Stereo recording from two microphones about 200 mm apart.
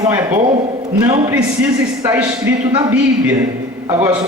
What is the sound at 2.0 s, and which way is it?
A man's voice, 10° right (ahead or behind).